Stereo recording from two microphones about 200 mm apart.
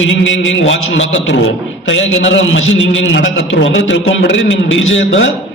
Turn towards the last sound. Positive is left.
turn(degrees=70)  # may be behind; listen again after turning